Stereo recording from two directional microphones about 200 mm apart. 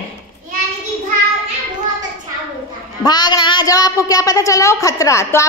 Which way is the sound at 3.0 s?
20° left (ahead or behind).